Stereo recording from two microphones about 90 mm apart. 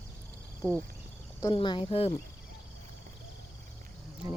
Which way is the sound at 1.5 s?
70° left (ahead or behind).